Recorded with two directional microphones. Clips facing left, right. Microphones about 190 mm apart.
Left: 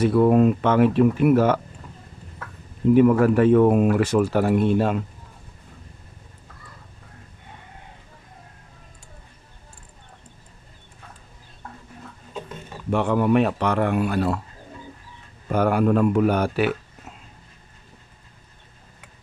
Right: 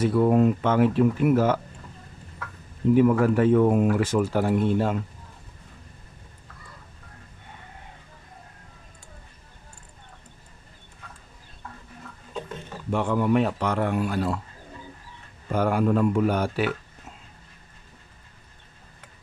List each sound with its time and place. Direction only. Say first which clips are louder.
0.0 s speech: left 3 dB; 65° left (ahead or behind)
2.9 s speech: left 3 dB; 65° left (ahead or behind)
12.9 s speech: left 3 dB; 70° left (ahead or behind)
15.5 s speech: left 3 dB; 65° left (ahead or behind)